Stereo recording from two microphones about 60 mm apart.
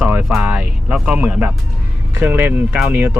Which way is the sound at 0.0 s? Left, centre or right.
Right.